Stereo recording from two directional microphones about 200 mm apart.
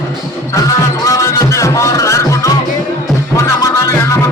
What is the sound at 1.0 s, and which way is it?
Music, 15° left (ahead or behind).